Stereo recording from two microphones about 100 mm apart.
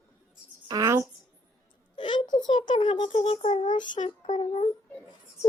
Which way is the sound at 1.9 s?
50° left (ahead or behind).